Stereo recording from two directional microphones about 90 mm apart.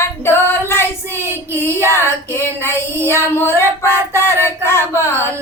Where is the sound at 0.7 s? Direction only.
25° left (ahead or behind).